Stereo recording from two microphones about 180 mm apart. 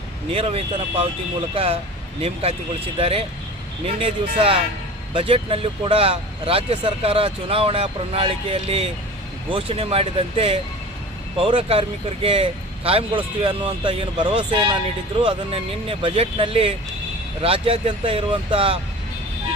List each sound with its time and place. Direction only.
0.3 s speech: 30° right (ahead or behind)